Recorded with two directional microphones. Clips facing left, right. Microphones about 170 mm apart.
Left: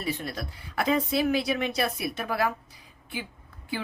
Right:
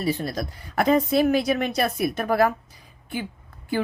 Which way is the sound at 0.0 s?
35° right (ahead or behind).